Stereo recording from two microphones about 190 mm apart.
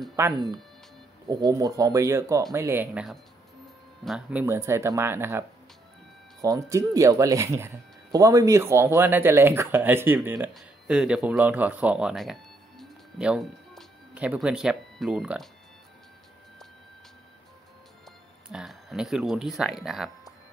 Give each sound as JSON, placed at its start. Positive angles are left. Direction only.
{"t": 0.1, "sound": "speech", "side_deg": -20}
{"t": 6.4, "sound": "speech", "side_deg": -15}
{"t": 18.5, "sound": "speech", "side_deg": 0}